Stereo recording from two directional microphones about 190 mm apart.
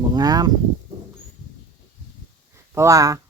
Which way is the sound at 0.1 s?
20° right (ahead or behind).